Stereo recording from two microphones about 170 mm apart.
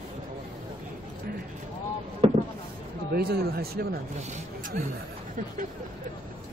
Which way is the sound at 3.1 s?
65° right (ahead or behind).